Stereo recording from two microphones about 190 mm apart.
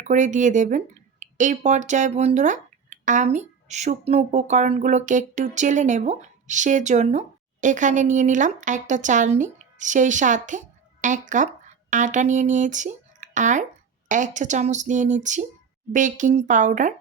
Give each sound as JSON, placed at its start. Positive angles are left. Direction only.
{"t": 0.0, "sound": "speech", "side_deg": -40}